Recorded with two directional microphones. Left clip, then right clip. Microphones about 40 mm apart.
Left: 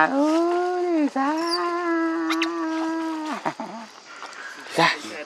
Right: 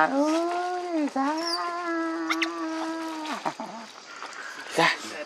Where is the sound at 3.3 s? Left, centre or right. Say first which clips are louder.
Left 3 dB; left.